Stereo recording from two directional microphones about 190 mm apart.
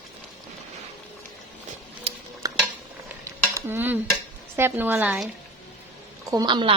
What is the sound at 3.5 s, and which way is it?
Dishes, 10° right (ahead or behind).